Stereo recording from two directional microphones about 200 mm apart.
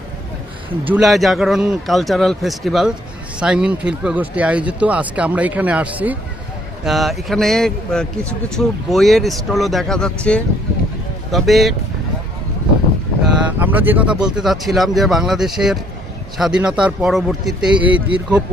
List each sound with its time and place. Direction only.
0.9 s speech: centre (ahead or behind)
13.2 s vehicle: 10° right (ahead or behind)
14.3 s speech: centre (ahead or behind)